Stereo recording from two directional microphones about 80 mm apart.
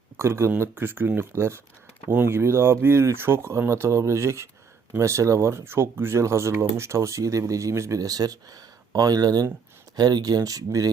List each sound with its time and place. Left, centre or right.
0.2 s speech: right